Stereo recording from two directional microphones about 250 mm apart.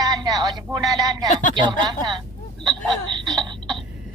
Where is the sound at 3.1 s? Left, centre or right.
Centre.